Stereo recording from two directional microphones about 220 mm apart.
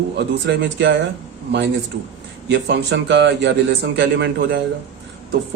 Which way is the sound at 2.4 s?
50° right (ahead or behind).